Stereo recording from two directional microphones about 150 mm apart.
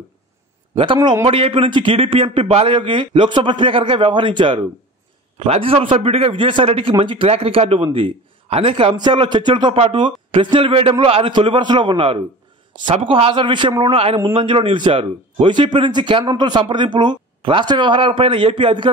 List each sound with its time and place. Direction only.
0.9 s a man's voice: 25° right (ahead or behind)
1.2 s a man's voice: 35° right (ahead or behind)